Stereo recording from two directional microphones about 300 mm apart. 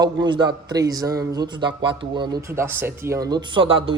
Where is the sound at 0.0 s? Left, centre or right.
Centre.